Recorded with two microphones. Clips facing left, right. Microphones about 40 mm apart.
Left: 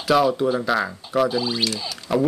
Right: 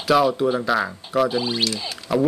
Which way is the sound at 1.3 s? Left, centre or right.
Right.